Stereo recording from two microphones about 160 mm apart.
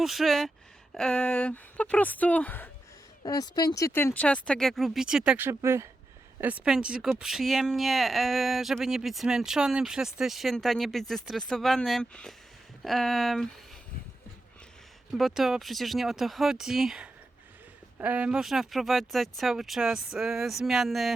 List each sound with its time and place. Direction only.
0.0 s speech: centre (ahead or behind)
3.2 s speech: 25° left (ahead or behind); by 13.5 s centre (ahead or behind)
15.1 s speech: centre (ahead or behind)